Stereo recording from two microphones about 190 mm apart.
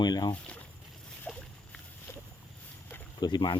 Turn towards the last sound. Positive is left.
turn(degrees=25)  # may be behind; listen again after turning